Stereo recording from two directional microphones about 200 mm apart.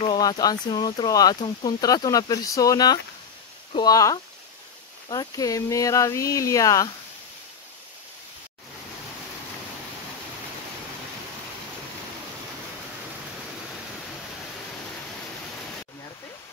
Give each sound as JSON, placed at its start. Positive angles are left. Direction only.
{"t": 0.0, "sound": "speech", "side_deg": 20}